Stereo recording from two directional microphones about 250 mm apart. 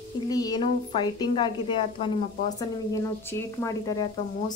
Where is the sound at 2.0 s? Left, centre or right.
Left.